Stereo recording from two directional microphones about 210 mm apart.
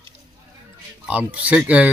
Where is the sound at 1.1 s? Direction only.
5° right (ahead or behind).